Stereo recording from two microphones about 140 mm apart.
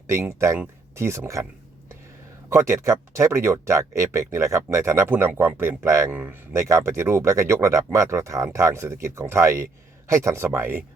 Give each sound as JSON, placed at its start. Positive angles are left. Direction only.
{"t": 0.1, "sound": "speech", "side_deg": -20}
{"t": 2.5, "sound": "speech", "side_deg": -20}
{"t": 6.1, "sound": "speech", "side_deg": -10}